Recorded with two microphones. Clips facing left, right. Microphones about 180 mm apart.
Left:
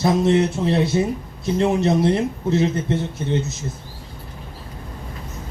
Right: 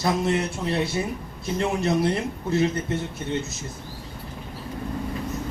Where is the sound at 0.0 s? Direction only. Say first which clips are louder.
Left 6 dB; 25° left (ahead or behind).